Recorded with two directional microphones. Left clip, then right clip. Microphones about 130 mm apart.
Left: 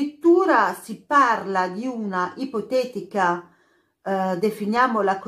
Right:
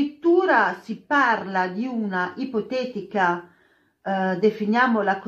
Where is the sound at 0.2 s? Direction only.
25° left (ahead or behind).